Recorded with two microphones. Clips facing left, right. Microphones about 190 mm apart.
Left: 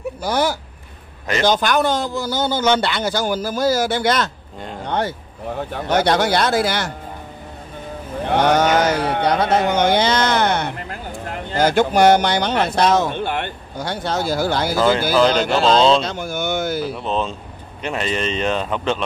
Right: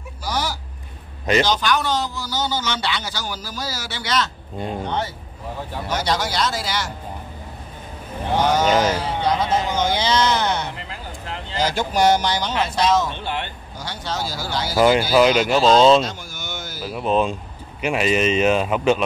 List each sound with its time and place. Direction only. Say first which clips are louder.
0.2 s speech: left 5 dB; 55° left (ahead or behind)
8.3 s speech: left 2 dB; 65° left (ahead or behind)
15.1 s a man's voice: even; 10° right (ahead or behind)
16.1 s a sound: left 10 dB; 60° left (ahead or behind)
16.8 s a man's voice: right 2 dB; 5° right (ahead or behind)